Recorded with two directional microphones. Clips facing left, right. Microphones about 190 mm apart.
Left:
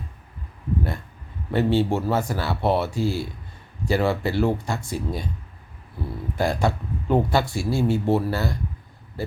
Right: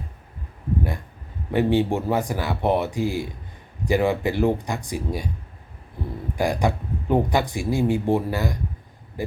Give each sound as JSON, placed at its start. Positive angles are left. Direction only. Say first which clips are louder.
{"t": 1.5, "sound": "speech", "louder": "right 1 dB", "side_deg": -15}
{"t": 6.3, "sound": "speech", "louder": "even", "side_deg": -15}